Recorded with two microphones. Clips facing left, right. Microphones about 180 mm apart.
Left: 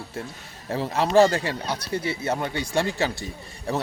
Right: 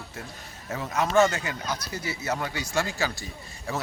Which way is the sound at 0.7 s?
30° left (ahead or behind).